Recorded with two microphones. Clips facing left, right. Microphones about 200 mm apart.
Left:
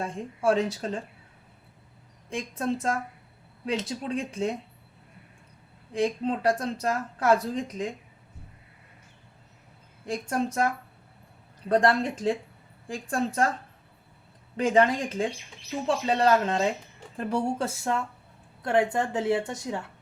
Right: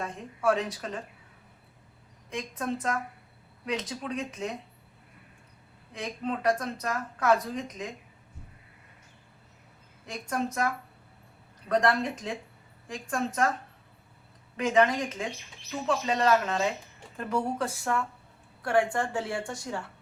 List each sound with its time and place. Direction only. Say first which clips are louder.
0.0 s a woman's voice: left 2 dB; 30° left (ahead or behind)
2.3 s a woman's voice: left 3 dB; 30° left (ahead or behind)
5.9 s a woman's voice: left 7 dB; 30° left (ahead or behind)
10.1 s a woman's voice: left 3 dB; 30° left (ahead or behind)
11.7 s speech: left 3 dB; 30° left (ahead or behind)
14.5 s a woman's voice: left 2 dB; 30° left (ahead or behind)